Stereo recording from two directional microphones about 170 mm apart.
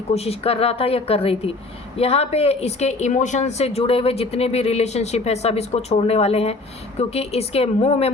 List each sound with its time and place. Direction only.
0.1 s a woman's voice: 35° left (ahead or behind)